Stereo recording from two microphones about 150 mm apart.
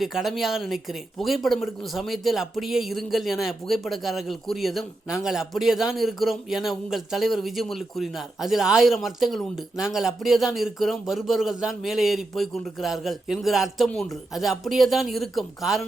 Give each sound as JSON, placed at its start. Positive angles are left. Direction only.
{"t": 0.0, "sound": "speech", "side_deg": 0}